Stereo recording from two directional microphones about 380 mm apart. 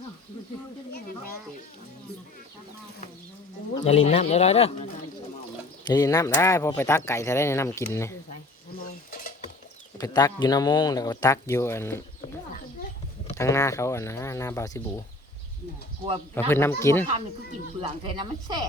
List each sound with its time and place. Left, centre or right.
3.8 s speech: centre
5.9 s speech: centre
8.8 s cutlery: left
10.0 s speech: centre
13.2 s speech: centre
16.5 s speech: centre
18.0 s speech: centre